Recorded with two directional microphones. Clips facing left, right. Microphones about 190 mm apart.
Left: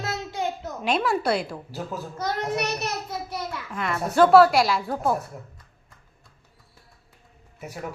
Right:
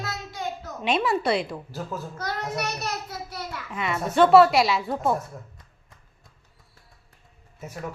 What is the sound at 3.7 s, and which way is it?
A woman's voice, 5° right (ahead or behind).